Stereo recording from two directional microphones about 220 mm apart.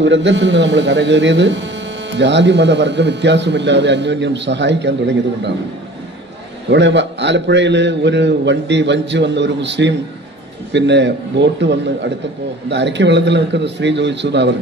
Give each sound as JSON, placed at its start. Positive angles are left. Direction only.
{"t": 0.0, "sound": "a man's voice", "side_deg": -55}
{"t": 6.7, "sound": "a man's voice", "side_deg": -55}